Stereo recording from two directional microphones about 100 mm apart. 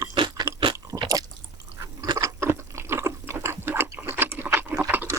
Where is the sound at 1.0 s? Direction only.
35° right (ahead or behind).